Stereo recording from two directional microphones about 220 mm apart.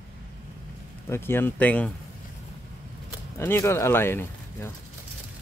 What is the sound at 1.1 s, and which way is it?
Speech, 10° left (ahead or behind).